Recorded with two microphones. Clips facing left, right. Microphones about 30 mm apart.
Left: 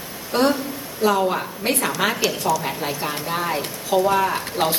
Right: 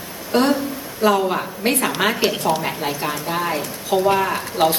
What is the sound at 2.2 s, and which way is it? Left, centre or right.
Speech, right.